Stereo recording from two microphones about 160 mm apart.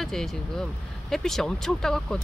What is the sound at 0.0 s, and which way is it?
Speech, centre (ahead or behind).